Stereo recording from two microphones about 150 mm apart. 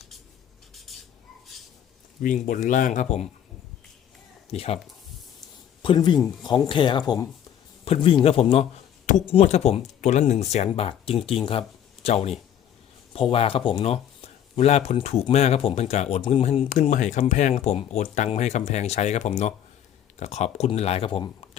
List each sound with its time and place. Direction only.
0.7 s squawk: centre (ahead or behind)
2.2 s speech: 60° left (ahead or behind)
4.5 s speech: 40° left (ahead or behind)
5.8 s speech: 30° left (ahead or behind)
7.9 s speech: 35° left (ahead or behind)